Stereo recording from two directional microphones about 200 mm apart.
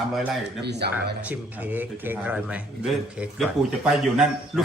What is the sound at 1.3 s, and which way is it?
A man's voice, 10° right (ahead or behind).